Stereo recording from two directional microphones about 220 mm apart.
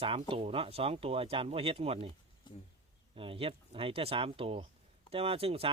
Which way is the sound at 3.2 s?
25° right (ahead or behind).